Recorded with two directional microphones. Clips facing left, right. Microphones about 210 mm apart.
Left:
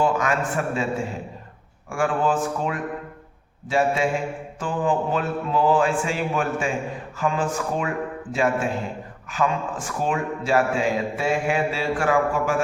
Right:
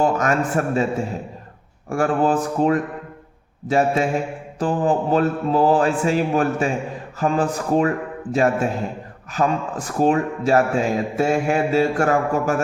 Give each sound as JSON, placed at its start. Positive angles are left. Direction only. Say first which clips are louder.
{"t": 0.0, "sound": "a man's voice", "louder": "right 3 dB", "side_deg": -45}
{"t": 1.9, "sound": "a man's voice", "louder": "right 4 dB", "side_deg": -40}